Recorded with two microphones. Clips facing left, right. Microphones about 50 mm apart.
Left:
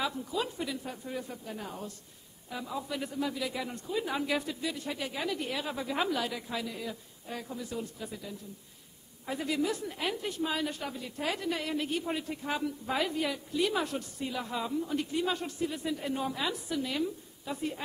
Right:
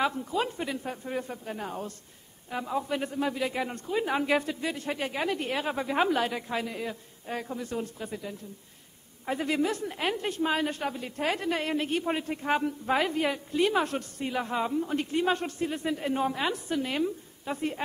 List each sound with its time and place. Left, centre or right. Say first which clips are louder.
0.0 s a woman's voice: right 5 dB; right